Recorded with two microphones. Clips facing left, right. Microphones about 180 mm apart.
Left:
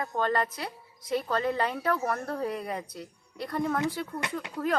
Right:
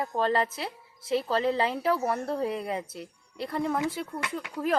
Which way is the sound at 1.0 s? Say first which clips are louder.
Right 2 dB; 25° right (ahead or behind).